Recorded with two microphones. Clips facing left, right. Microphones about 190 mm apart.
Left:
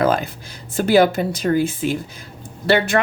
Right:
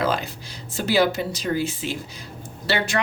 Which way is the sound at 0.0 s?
50° left (ahead or behind).